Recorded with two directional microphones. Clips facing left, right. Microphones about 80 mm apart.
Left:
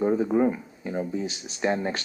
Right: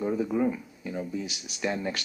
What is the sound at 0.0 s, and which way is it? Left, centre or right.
Speech, left.